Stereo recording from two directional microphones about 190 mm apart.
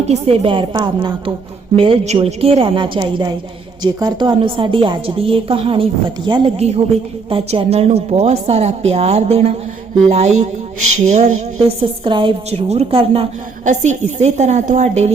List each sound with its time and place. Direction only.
0.0 s a woman's voice: 35° right (ahead or behind)